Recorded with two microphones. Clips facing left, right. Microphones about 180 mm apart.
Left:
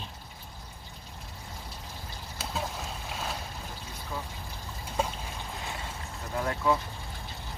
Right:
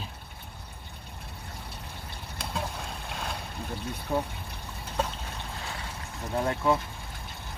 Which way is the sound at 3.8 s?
65° right (ahead or behind).